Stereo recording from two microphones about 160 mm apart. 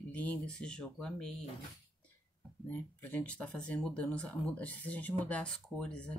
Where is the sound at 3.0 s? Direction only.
10° left (ahead or behind).